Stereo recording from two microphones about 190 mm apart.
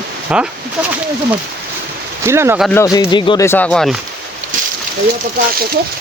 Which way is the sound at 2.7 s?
15° left (ahead or behind).